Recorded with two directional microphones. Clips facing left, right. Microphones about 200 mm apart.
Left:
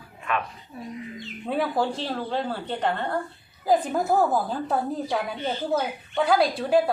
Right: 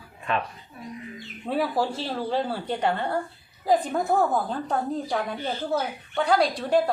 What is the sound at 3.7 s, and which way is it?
Speech, 5° left (ahead or behind).